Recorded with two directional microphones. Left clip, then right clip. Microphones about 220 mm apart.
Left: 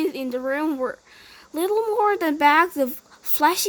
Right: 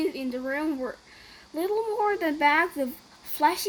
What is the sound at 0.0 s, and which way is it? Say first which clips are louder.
A woman's voice: left 5 dB; 50° left (ahead or behind).